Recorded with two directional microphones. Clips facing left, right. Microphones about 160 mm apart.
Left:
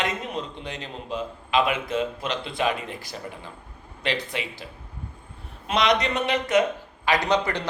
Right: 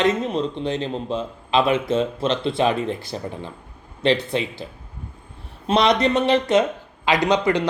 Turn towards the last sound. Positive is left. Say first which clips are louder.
# right 5 dB
turn(degrees=-15)  # may be behind; listen again after turning